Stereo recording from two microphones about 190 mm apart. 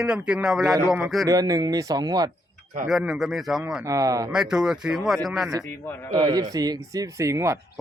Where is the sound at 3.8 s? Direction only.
15° right (ahead or behind).